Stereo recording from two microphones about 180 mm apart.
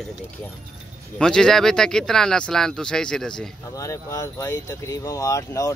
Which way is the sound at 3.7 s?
20° left (ahead or behind).